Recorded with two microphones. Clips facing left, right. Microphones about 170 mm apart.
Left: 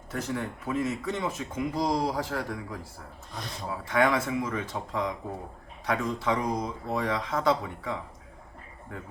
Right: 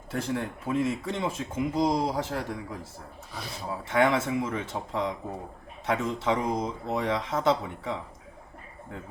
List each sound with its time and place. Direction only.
0.1 s speech: 30° right (ahead or behind)
3.3 s speech: 5° right (ahead or behind)
3.7 s speech: 25° right (ahead or behind)